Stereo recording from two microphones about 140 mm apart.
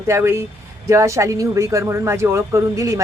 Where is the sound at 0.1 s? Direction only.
20° right (ahead or behind).